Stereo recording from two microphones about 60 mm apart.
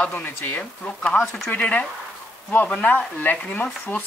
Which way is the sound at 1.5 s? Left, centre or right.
Left.